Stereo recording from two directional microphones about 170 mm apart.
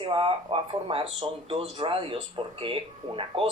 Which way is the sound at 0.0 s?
30° right (ahead or behind).